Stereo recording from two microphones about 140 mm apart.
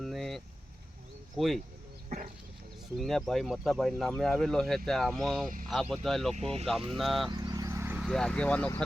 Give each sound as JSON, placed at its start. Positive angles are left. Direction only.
{"t": 0.0, "sound": "vehicle", "side_deg": 0}
{"t": 1.4, "sound": "speech", "side_deg": 0}
{"t": 3.0, "sound": "speech", "side_deg": 0}
{"t": 6.3, "sound": "speech", "side_deg": -45}
{"t": 6.7, "sound": "speech", "side_deg": 0}
{"t": 7.3, "sound": "vehicle", "side_deg": -30}
{"t": 7.9, "sound": "speech", "side_deg": 0}